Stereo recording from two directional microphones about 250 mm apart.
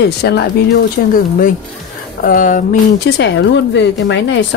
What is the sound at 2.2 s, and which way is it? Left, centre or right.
Speech, left.